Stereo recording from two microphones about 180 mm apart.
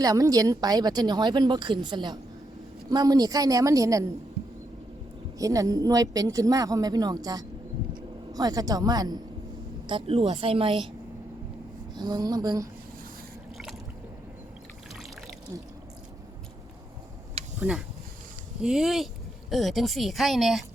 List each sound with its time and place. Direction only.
0.0 s speech: 20° right (ahead or behind)
5.4 s a woman's voice: 20° right (ahead or behind)
11.9 s speech: 25° right (ahead or behind)
17.6 s speech: 5° right (ahead or behind)